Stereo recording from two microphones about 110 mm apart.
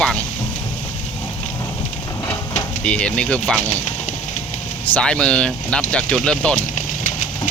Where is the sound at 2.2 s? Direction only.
20° left (ahead or behind).